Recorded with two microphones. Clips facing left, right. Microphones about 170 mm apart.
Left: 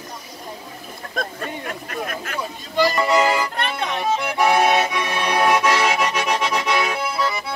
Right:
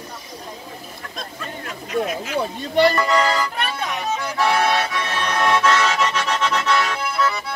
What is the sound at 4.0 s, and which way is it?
Accordion, 15° left (ahead or behind).